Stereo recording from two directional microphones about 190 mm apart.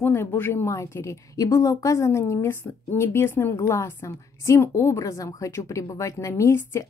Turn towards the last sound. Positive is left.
turn(degrees=15)  # may be behind; listen again after turning